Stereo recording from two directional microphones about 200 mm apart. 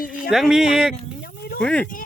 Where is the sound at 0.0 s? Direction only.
45° left (ahead or behind).